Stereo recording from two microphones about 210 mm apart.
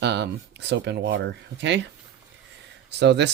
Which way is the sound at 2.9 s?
55° right (ahead or behind).